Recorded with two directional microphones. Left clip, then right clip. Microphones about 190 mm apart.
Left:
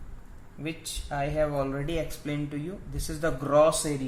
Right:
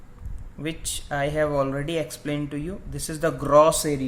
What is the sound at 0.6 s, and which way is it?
Speech, 35° right (ahead or behind).